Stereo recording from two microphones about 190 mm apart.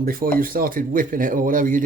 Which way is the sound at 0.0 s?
50° right (ahead or behind).